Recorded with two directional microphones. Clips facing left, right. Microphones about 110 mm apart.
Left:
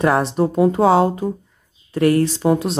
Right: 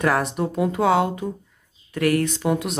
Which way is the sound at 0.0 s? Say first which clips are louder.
Left 5 dB; 30° left (ahead or behind).